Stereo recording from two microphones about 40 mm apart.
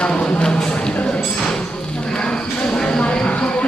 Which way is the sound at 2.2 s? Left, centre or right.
Centre.